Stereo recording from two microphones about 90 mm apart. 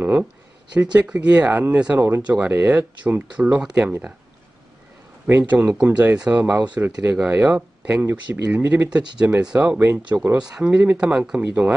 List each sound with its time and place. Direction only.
0.9 s speech: 15° right (ahead or behind)
2.0 s speech: 25° right (ahead or behind)
2.2 s speech: 15° right (ahead or behind)
5.2 s speech: 15° right (ahead or behind)